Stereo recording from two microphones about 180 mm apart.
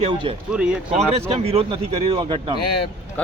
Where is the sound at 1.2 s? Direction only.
35° right (ahead or behind).